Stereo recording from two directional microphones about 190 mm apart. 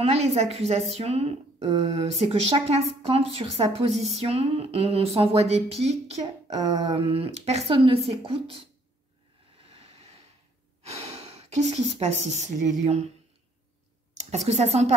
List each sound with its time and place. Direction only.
0.0 s speech: 35° right (ahead or behind)
9.8 s a sound: 35° right (ahead or behind)
10.9 s speech: 35° right (ahead or behind)
14.1 s speech: 35° right (ahead or behind)